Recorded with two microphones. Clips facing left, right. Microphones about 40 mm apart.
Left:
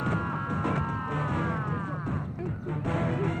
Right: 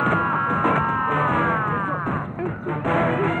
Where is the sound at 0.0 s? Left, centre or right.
Right.